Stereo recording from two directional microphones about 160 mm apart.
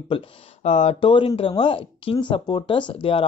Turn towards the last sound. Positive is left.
turn(degrees=35)  # may be behind; listen again after turning